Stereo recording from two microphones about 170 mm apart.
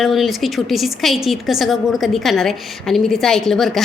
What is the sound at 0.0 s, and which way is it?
A woman's voice, centre (ahead or behind).